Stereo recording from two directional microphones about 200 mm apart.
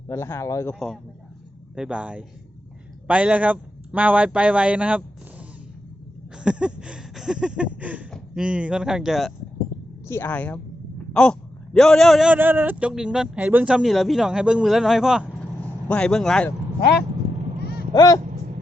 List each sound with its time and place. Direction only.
0.1 s a man's voice: 15° left (ahead or behind)
1.7 s a man's voice: 5° right (ahead or behind)
6.3 s a sound: 5° right (ahead or behind)
10.1 s a man's voice: 10° left (ahead or behind)
17.9 s vehicle: 20° left (ahead or behind)